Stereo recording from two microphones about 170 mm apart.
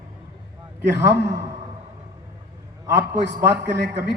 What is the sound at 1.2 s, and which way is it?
Speech, 20° right (ahead or behind).